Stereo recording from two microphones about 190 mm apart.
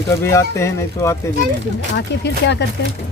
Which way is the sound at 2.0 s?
65° left (ahead or behind).